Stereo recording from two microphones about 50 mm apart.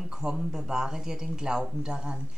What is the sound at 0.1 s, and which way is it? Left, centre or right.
Speech, centre.